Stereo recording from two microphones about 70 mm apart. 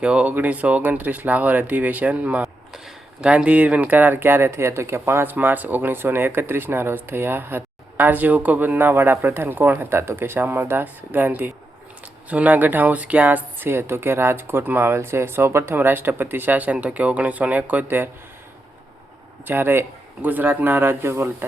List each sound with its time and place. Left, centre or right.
0.0 s speech: centre; by 18.1 s right
19.5 s speech: right